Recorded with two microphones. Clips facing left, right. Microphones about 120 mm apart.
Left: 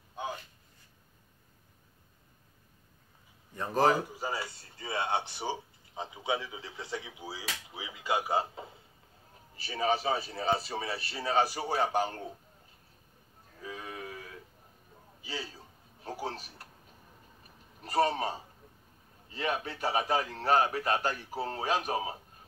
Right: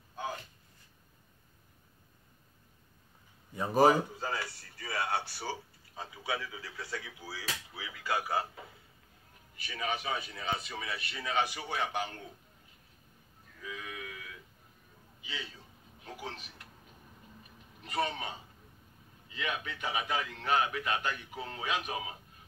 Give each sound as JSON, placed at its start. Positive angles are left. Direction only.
{"t": 3.5, "sound": "speech", "side_deg": -10}
{"t": 3.9, "sound": "speech", "side_deg": 5}
{"t": 4.3, "sound": "a man's voice", "side_deg": 20}
{"t": 13.6, "sound": "a sound", "side_deg": 35}
{"t": 17.8, "sound": "a man's voice", "side_deg": 40}